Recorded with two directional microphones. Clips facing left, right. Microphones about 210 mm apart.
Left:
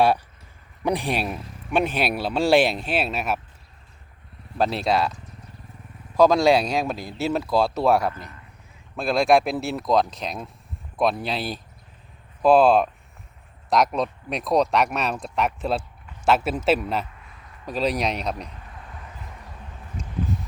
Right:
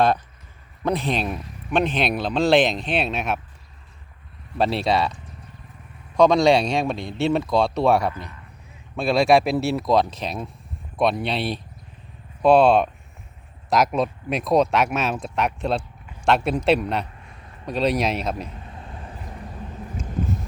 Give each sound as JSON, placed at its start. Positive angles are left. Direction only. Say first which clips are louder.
{"t": 0.9, "sound": "a man's voice", "louder": "right 1 dB", "side_deg": 15}
{"t": 4.5, "sound": "speech", "louder": "right 1 dB", "side_deg": 0}
{"t": 6.1, "sound": "speech", "louder": "right 1 dB", "side_deg": 5}
{"t": 18.6, "sound": "a sound", "louder": "right 4 dB", "side_deg": -25}
{"t": 20.0, "sound": "vehicle", "louder": "right 2 dB", "side_deg": 0}